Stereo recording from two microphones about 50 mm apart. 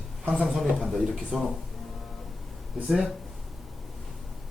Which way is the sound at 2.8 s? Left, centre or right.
Centre.